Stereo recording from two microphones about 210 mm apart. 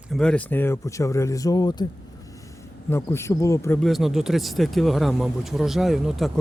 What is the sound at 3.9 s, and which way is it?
Speech, centre (ahead or behind).